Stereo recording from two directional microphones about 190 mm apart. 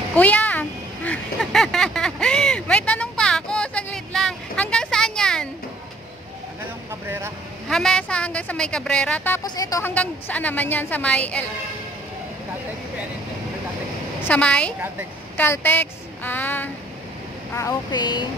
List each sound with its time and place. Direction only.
0.1 s a sound: 10° left (ahead or behind)
6.9 s vehicle: 15° right (ahead or behind)
7.6 s speech: centre (ahead or behind)
14.2 s a woman's voice: 5° left (ahead or behind); by 18.2 s 20° left (ahead or behind)